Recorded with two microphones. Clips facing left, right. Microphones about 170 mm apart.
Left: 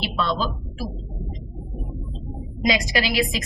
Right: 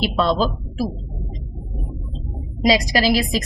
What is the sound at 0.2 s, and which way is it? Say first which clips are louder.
Speech: right 5 dB; 35° right (ahead or behind).